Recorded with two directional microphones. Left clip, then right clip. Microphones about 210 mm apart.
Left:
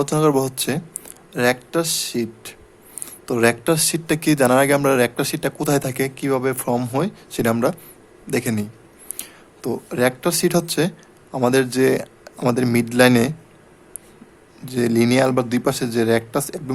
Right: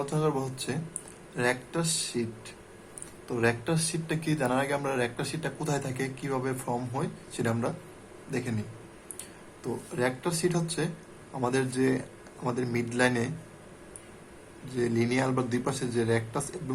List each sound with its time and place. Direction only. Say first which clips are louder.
0.0 s speech: left 12 dB; 50° left (ahead or behind)
14.8 s speech: left 11 dB; 50° left (ahead or behind)